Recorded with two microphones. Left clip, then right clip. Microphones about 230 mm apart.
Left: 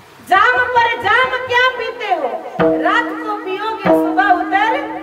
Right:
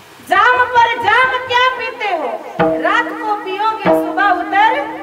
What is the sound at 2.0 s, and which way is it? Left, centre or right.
Speech, right.